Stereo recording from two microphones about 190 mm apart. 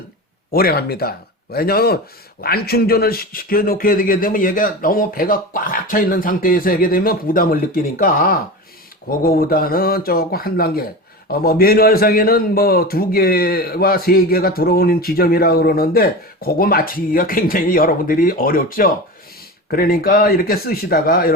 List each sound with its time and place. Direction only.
0.5 s a man's voice: 55° left (ahead or behind)